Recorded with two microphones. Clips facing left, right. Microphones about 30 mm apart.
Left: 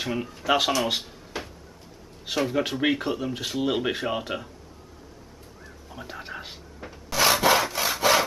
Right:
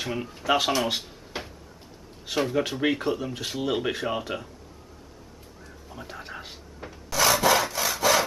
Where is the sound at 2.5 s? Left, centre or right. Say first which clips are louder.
Left 1 dB; centre.